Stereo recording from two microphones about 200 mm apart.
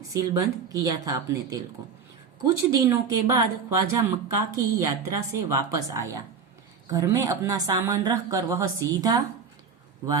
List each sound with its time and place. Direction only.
0.1 s speech: 15° right (ahead or behind)